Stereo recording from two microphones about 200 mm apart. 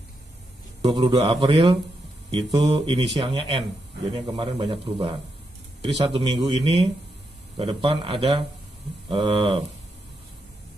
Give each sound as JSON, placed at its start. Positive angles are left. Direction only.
{"t": 0.8, "sound": "speech", "side_deg": -25}